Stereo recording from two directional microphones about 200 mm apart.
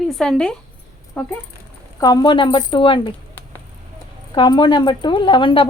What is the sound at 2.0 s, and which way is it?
A woman's voice, 20° left (ahead or behind).